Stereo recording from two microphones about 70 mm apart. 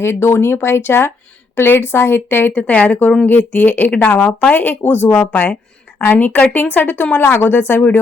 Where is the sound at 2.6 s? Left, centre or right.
Centre.